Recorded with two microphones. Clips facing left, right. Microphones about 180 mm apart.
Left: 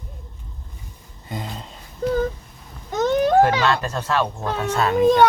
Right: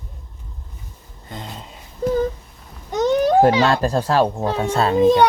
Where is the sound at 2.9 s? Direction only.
15° right (ahead or behind).